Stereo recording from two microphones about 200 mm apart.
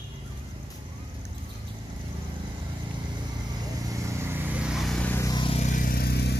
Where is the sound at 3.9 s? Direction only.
15° right (ahead or behind).